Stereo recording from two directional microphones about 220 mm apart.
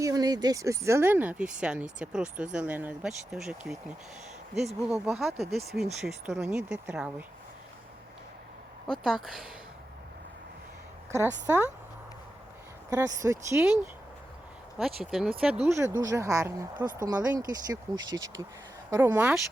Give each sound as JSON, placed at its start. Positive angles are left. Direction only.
{"t": 0.0, "sound": "speech", "side_deg": -15}
{"t": 8.9, "sound": "speech", "side_deg": 0}
{"t": 11.4, "sound": "speech", "side_deg": -10}
{"t": 12.9, "sound": "speech", "side_deg": -15}
{"t": 14.8, "sound": "speech", "side_deg": 0}